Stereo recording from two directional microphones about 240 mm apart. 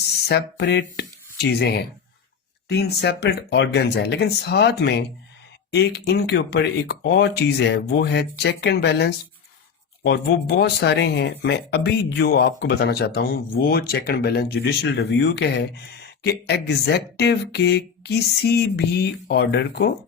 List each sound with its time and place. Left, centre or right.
0.3 s speech: left